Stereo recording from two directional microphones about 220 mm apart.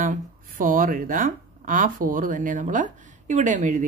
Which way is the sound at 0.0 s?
40° right (ahead or behind).